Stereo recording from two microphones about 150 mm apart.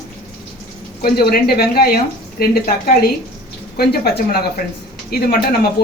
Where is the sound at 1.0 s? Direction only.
90° left.